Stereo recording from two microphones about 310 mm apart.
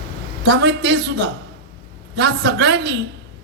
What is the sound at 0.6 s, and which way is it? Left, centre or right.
Speech, right.